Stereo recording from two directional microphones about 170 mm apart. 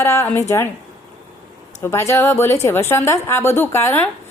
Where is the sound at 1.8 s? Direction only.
15° left (ahead or behind).